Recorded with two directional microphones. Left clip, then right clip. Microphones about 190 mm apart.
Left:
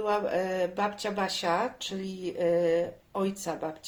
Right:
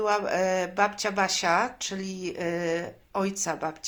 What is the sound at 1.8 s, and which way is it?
Speech, 60° right (ahead or behind).